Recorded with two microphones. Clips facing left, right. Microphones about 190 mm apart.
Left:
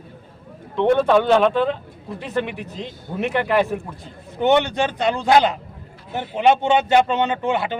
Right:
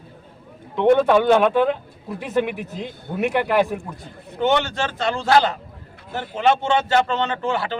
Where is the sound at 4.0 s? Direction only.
20° left (ahead or behind).